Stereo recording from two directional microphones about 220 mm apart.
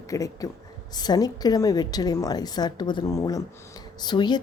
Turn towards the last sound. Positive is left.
turn(degrees=20)  # may be behind; listen again after turning